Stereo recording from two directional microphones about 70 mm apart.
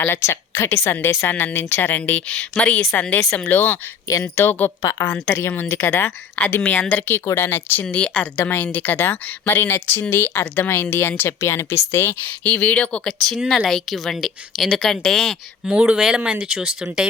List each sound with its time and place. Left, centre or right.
0.2 s speech: left
4.8 s a woman's voice: left
5.3 s speech: left
6.6 s speech: centre
7.3 s speech: left; by 8.3 s centre
8.4 s speech: left
13.1 s speech: centre
15.6 s speech: centre